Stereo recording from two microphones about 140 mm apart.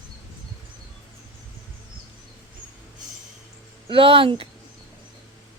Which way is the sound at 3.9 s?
40° right (ahead or behind).